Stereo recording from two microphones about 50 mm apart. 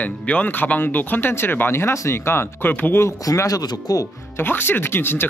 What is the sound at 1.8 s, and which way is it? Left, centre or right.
Speech, left.